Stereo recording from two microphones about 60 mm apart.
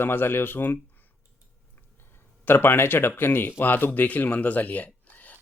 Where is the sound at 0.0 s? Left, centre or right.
Left.